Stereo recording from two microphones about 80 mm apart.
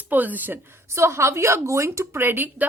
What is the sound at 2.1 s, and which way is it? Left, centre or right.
Speech, right.